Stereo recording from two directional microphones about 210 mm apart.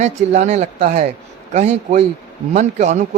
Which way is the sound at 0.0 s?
35° right (ahead or behind).